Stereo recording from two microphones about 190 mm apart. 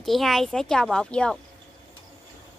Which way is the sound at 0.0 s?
Centre (ahead or behind).